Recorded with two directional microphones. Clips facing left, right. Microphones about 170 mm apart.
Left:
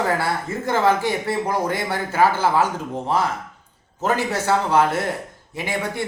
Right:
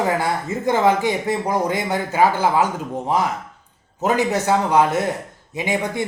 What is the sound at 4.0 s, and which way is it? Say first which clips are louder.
Speech: right 3 dB; 15° right (ahead or behind).